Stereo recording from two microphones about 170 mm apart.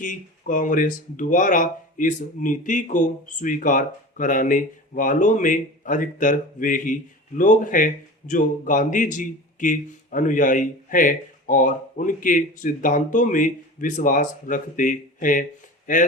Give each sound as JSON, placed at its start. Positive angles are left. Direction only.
{"t": 0.0, "sound": "speech", "side_deg": 50}